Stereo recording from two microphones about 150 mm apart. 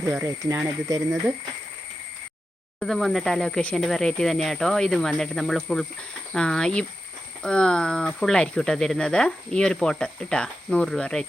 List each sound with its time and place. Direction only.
0.1 s speech: 20° right (ahead or behind)
2.8 s speech: centre (ahead or behind)